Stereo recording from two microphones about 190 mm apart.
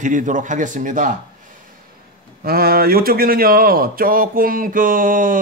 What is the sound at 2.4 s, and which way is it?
A man's voice, 50° right (ahead or behind).